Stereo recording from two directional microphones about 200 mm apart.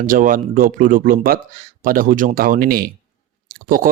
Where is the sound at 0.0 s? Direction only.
45° right (ahead or behind).